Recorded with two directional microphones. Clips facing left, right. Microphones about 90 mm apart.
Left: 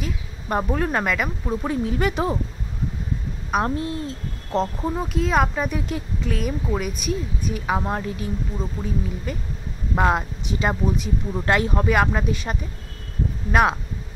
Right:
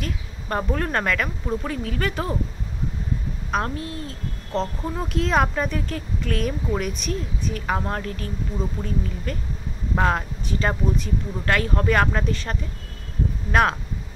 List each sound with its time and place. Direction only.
0.0 s a woman's voice: 10° left (ahead or behind)
1.7 s speech: 20° left (ahead or behind)
3.6 s speech: 25° left (ahead or behind)
4.9 s a woman's voice: 5° left (ahead or behind)
6.3 s a woman's voice: 5° left (ahead or behind); by 11.8 s 20° left (ahead or behind)
11.8 s a woman's voice: 10° left (ahead or behind)